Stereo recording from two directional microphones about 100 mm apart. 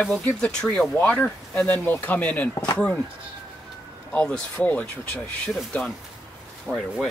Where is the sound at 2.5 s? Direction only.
45° left (ahead or behind).